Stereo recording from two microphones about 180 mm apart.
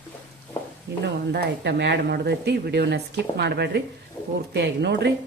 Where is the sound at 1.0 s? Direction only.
65° right (ahead or behind).